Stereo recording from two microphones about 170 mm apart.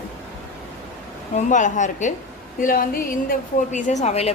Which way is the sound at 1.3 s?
45° left (ahead or behind).